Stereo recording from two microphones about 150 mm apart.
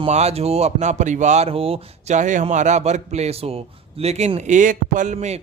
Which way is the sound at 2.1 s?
55° right (ahead or behind).